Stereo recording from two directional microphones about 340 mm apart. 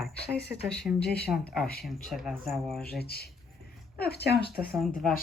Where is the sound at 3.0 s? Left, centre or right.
Left.